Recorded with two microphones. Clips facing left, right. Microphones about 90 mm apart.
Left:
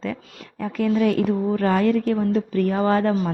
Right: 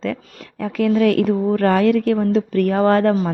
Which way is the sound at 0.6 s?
90° right.